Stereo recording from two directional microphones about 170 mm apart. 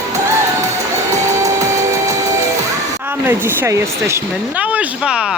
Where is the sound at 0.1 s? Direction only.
15° right (ahead or behind).